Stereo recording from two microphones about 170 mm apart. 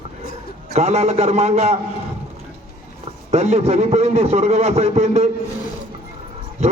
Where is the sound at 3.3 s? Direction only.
40° right (ahead or behind).